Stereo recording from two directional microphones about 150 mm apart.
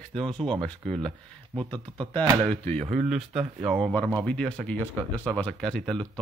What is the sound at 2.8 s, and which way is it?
Speech, 45° right (ahead or behind).